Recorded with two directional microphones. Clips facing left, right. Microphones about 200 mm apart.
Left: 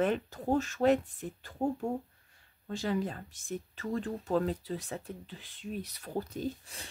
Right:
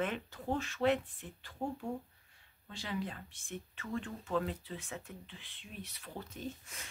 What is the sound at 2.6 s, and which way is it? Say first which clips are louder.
Speech: left 8 dB; 45° left (ahead or behind).